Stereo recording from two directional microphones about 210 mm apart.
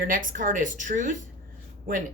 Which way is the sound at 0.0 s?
40° right (ahead or behind).